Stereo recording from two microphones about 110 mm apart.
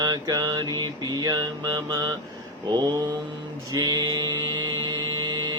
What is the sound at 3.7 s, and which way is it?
Mantra, 35° right (ahead or behind).